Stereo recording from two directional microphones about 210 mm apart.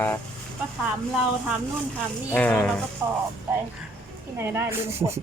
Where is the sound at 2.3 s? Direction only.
5° left (ahead or behind).